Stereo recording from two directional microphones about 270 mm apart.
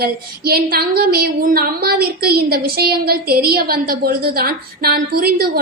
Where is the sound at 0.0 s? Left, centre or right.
Right.